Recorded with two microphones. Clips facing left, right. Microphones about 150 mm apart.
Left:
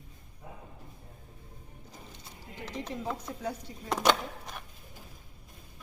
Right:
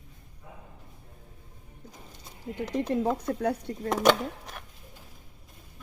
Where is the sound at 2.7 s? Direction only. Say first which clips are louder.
Right 9 dB; 45° right (ahead or behind).